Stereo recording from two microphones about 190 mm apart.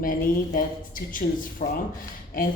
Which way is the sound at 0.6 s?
45° left (ahead or behind).